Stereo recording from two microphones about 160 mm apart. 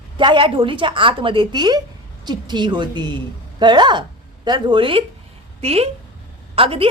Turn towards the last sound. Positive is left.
turn(degrees=-35)  # may be behind; listen again after turning